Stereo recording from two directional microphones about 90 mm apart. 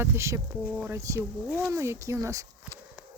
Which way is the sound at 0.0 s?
30° right (ahead or behind).